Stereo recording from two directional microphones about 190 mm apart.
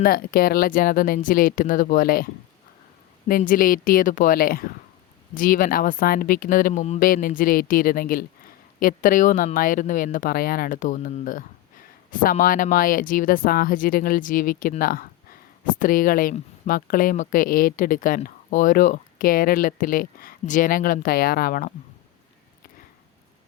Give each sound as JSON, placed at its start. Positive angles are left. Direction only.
{"t": 0.0, "sound": "speech", "side_deg": 50}
{"t": 3.2, "sound": "speech", "side_deg": 45}
{"t": 7.1, "sound": "speech", "side_deg": 50}